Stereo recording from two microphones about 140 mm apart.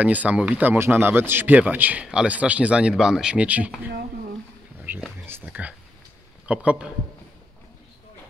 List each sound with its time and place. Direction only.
0.0 s speech: 10° right (ahead or behind)